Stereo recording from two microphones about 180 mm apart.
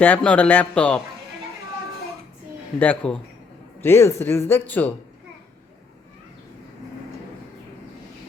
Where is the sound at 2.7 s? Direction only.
5° left (ahead or behind).